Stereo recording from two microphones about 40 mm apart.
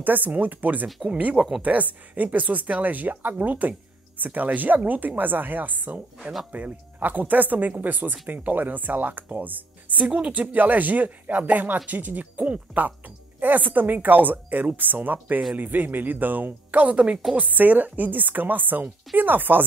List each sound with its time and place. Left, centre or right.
0.0 s speech: right
19.1 s chopping: right